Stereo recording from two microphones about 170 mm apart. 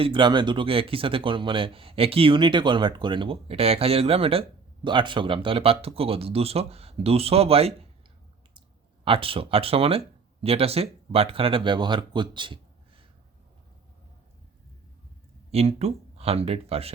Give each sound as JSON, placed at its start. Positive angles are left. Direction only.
{"t": 0.0, "sound": "speech", "side_deg": -30}
{"t": 9.0, "sound": "speech", "side_deg": -30}
{"t": 15.5, "sound": "speech", "side_deg": -40}